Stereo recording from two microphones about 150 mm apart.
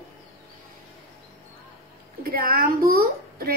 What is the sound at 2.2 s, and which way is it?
A child's voice, 80° right.